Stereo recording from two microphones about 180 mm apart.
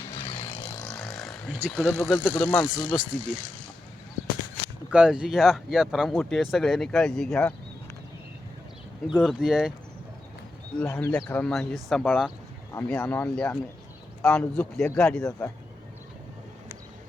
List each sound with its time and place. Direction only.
0.0 s vehicle: 25° left (ahead or behind)
0.8 s a sound: 5° left (ahead or behind)
1.7 s speech: centre (ahead or behind)
4.9 s speech: 5° right (ahead or behind)
9.2 s speech: centre (ahead or behind)
10.8 s speech: 10° left (ahead or behind)